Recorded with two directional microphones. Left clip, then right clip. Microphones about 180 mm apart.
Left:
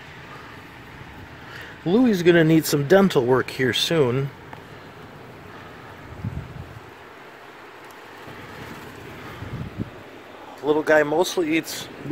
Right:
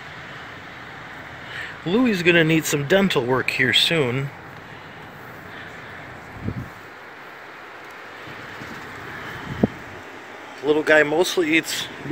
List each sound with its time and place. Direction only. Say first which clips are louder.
1.9 s speech: left 1 dB; 15° left (ahead or behind)
10.6 s speech: right 2 dB; centre (ahead or behind)